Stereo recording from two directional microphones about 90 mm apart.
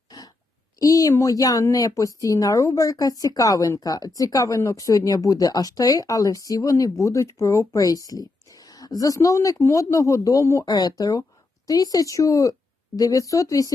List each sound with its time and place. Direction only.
0.1 s a sound: 45° left (ahead or behind)
0.8 s speech: 40° left (ahead or behind)
10.8 s speech: 45° left (ahead or behind)